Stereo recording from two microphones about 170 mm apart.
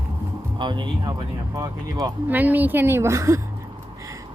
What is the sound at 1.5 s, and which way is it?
Speech, 15° right (ahead or behind).